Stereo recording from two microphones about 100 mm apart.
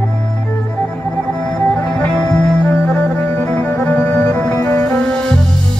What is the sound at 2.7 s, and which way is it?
Music, 15° left (ahead or behind).